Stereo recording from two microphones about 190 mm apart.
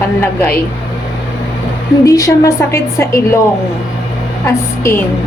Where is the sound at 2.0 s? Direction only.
20° left (ahead or behind).